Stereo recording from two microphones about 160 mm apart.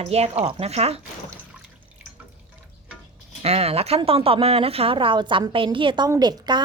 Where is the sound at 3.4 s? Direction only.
40° right (ahead or behind).